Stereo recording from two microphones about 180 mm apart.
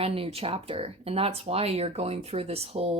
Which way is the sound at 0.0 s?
35° right (ahead or behind).